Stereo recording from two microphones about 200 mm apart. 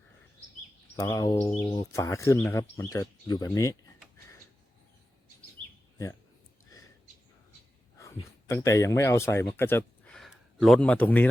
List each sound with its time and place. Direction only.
0.9 s bird: 20° left (ahead or behind)
1.5 s speech: 10° left (ahead or behind)
7.9 s speech: 15° left (ahead or behind)
10.2 s a man's voice: centre (ahead or behind)